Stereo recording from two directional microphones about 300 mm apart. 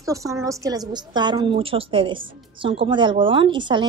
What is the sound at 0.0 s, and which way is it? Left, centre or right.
A woman's voice, centre.